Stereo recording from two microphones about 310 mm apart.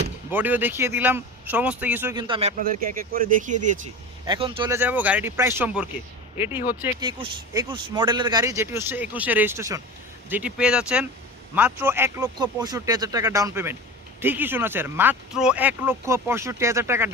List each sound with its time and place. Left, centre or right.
0.3 s speech: centre